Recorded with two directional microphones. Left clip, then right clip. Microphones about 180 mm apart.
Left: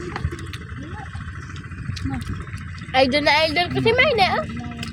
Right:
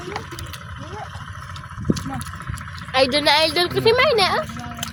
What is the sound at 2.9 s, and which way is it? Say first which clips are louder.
Speech: even; 5° right (ahead or behind).